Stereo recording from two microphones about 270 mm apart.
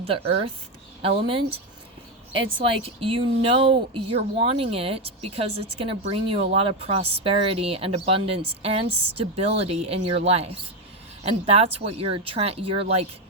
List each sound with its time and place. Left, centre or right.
0.0 s speech: right
2.6 s speech: centre